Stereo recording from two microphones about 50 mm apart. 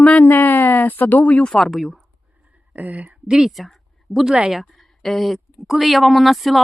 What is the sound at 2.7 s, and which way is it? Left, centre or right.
Speech, right.